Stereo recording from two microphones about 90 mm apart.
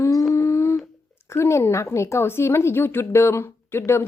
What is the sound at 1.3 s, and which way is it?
A woman's voice, 30° left (ahead or behind).